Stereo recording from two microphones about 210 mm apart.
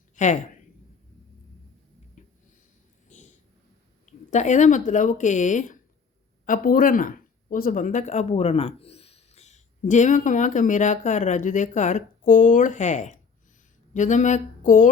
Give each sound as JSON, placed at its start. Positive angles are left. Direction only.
{"t": 0.2, "sound": "speech", "side_deg": 35}
{"t": 2.2, "sound": "a sound", "side_deg": 35}
{"t": 4.0, "sound": "speech", "side_deg": 35}